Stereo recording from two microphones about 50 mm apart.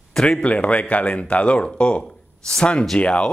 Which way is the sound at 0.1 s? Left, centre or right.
Centre.